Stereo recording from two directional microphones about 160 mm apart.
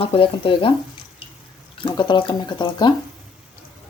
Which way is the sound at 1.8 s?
30° left (ahead or behind).